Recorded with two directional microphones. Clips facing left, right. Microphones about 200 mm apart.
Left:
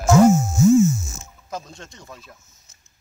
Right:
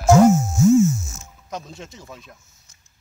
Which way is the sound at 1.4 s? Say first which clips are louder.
Right 1 dB; centre (ahead or behind).